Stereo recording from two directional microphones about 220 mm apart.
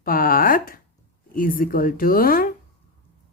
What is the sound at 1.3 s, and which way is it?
Speech, 40° left (ahead or behind).